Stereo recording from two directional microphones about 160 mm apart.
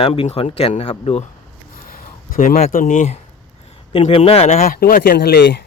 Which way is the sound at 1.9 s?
65° left (ahead or behind).